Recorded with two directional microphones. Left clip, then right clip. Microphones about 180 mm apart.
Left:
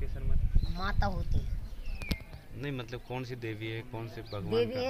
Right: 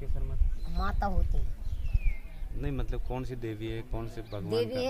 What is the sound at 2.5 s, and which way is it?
A man's voice, 55° right (ahead or behind).